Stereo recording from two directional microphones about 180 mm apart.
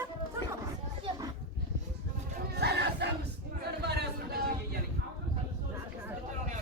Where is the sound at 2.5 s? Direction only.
65° right (ahead or behind).